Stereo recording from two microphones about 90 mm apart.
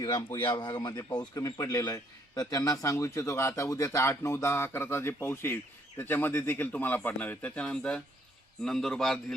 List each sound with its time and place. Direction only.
0.0 s a man's voice: 40° left (ahead or behind)
0.5 s speech: 55° left (ahead or behind)
1.4 s a man's voice: 40° left (ahead or behind); by 9.2 s 5° left (ahead or behind)